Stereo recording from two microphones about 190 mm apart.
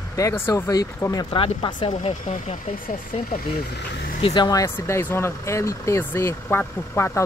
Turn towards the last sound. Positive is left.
turn(degrees=15)  # may be behind; listen again after turning